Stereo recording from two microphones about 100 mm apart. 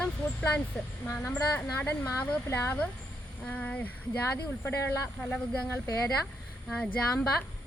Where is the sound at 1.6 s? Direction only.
15° left (ahead or behind).